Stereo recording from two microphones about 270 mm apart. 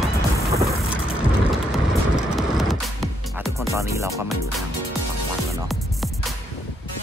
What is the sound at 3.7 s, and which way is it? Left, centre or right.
Music, centre.